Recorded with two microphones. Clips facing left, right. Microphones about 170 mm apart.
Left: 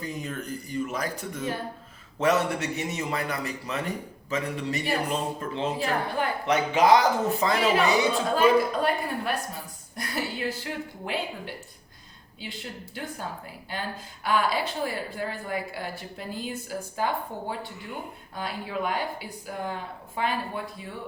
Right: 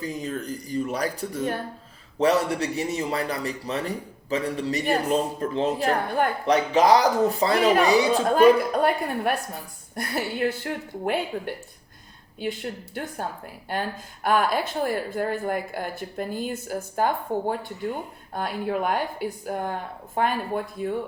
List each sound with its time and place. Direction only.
0.0 s a man's voice: 35° right (ahead or behind)
6.4 s a man's voice: 35° right (ahead or behind)
8.4 s speech: 55° right (ahead or behind)